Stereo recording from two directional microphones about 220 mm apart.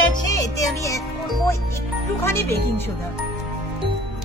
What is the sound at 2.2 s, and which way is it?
Speech, 10° left (ahead or behind).